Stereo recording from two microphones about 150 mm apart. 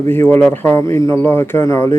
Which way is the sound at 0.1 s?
15° left (ahead or behind).